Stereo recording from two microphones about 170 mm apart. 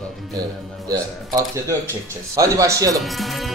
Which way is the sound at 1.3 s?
20° right (ahead or behind).